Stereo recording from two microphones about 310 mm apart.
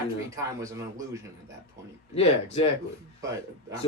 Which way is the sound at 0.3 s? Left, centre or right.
Centre.